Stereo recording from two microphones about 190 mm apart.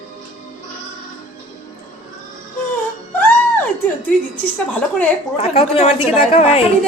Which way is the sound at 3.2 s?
10° left (ahead or behind).